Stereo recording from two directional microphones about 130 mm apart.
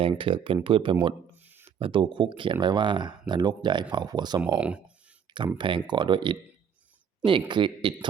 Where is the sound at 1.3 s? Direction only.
15° right (ahead or behind).